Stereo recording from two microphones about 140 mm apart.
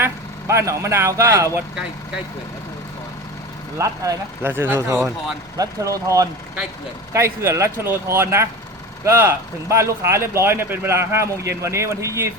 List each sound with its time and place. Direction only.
0.0 s speech: 20° right (ahead or behind)
3.8 s speech: 25° right (ahead or behind)